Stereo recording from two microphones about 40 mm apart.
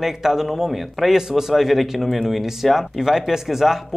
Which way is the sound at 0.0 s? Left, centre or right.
Centre.